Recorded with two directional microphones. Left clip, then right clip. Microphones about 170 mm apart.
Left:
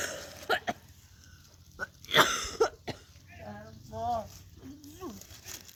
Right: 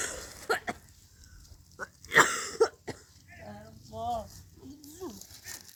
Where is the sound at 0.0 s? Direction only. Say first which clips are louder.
Left 1 dB; 25° left (ahead or behind).